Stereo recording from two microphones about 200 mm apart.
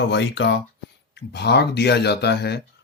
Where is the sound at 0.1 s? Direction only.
60° left (ahead or behind).